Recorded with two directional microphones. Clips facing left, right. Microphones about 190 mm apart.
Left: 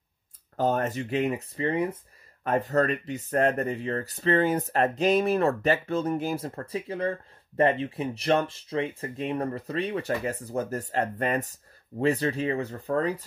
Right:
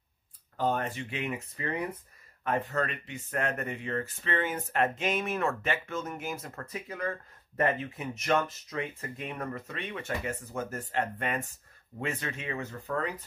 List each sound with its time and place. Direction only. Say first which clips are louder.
0.6 s speech: left 5 dB; 40° left (ahead or behind); by 2.0 s 25° left (ahead or behind)
2.4 s speech: left 6 dB; 40° left (ahead or behind)